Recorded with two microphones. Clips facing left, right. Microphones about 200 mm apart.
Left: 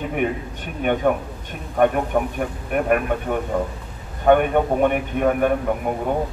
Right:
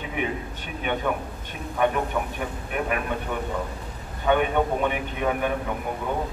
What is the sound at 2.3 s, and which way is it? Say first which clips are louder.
A man's voice: left 6 dB; 50° left (ahead or behind).